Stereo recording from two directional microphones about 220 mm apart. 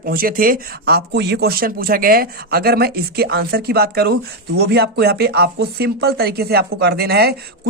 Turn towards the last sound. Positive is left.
turn(degrees=-45)  # may be behind; listen again after turning